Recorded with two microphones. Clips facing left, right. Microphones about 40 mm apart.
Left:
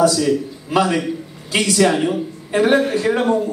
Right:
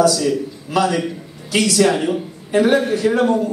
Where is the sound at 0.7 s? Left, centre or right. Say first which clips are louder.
Left 1 dB; left.